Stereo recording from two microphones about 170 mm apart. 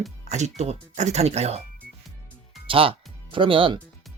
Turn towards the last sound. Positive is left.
turn(degrees=-30)  # may be behind; listen again after turning